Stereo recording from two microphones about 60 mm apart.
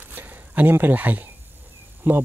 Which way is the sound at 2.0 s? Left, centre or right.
Right.